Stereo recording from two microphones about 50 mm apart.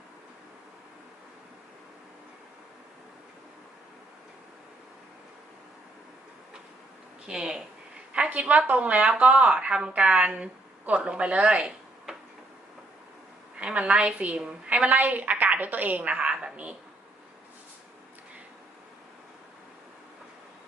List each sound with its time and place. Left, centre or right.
7.3 s speech: centre
8.3 s speech: right
13.6 s a woman's voice: right